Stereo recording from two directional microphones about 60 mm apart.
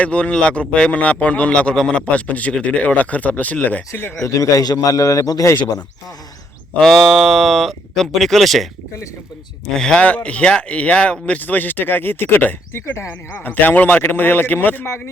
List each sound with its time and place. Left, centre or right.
0.0 s speech: centre
4.2 s a man's voice: left
6.7 s speech: centre
9.7 s speech: centre
11.3 s a man's voice: left
12.7 s speech: left
13.1 s a man's voice: left
14.8 s speech: left